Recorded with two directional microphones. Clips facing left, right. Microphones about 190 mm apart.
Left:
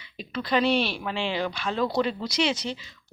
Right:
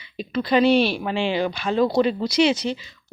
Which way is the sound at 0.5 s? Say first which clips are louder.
Right 6 dB; 5° right (ahead or behind).